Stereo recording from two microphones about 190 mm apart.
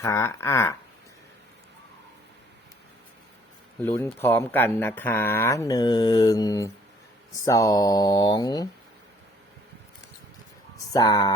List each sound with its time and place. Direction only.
0.0 s speech: 15° left (ahead or behind)
3.8 s speech: 10° left (ahead or behind)
10.9 s speech: 20° left (ahead or behind)